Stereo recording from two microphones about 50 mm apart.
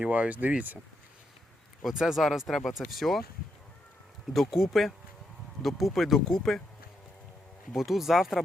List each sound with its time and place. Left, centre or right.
0.0 s speech: right
1.8 s speech: centre
4.4 s speech: centre
7.8 s speech: centre